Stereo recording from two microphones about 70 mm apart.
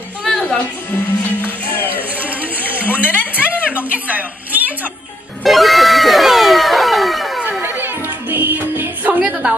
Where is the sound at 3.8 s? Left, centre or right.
Right.